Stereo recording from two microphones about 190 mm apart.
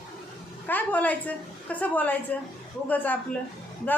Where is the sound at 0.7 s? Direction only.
10° left (ahead or behind).